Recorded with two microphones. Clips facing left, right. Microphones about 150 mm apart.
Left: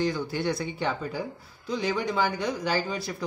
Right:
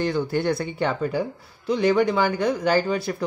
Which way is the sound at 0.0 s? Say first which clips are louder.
Right 4 dB; 55° right (ahead or behind).